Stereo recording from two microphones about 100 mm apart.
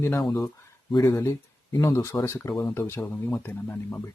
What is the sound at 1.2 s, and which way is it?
Speech, 30° left (ahead or behind).